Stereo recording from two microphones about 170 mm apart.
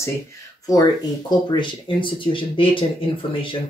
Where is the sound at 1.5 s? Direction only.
30° left (ahead or behind).